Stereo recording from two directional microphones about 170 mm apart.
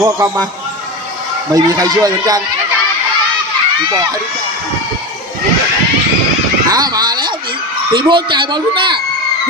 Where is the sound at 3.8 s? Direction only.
25° right (ahead or behind).